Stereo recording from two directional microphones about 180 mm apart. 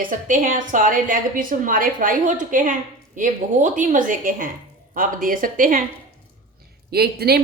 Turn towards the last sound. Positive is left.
turn(degrees=-60)  # may be behind; listen again after turning